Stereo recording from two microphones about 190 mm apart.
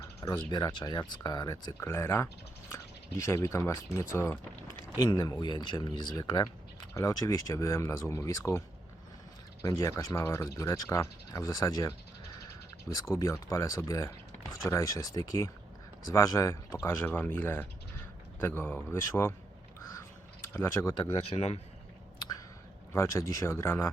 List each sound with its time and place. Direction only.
0.0 s speech: 20° left (ahead or behind)
20.0 s a sound: 15° left (ahead or behind)
20.9 s speech: 25° left (ahead or behind)
22.9 s speech: 15° left (ahead or behind)